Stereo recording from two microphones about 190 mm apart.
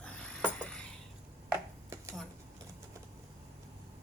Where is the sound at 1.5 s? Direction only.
15° right (ahead or behind).